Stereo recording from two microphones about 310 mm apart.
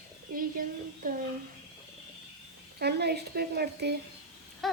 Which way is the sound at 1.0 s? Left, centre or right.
Right.